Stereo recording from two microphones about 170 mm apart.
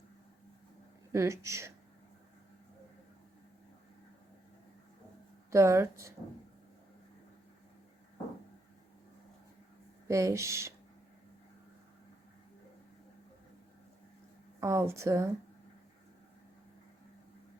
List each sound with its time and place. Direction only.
1.1 s speech: 15° right (ahead or behind)
5.5 s speech: 15° right (ahead or behind)
10.1 s speech: 20° right (ahead or behind)
14.6 s speech: 15° right (ahead or behind)